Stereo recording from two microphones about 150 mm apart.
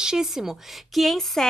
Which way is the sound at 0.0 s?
5° right (ahead or behind).